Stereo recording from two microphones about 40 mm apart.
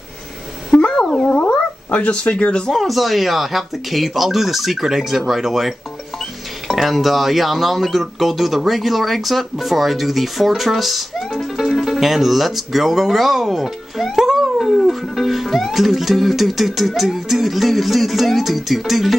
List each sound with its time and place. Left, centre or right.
0.7 s a sound: left
1.9 s speech: left
2.7 s speech: centre